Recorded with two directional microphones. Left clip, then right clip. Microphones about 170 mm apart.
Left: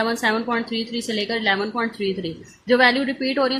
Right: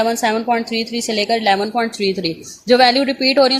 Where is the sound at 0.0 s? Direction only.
30° right (ahead or behind).